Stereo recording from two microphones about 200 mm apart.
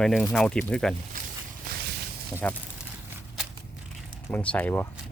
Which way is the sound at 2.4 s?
5° left (ahead or behind).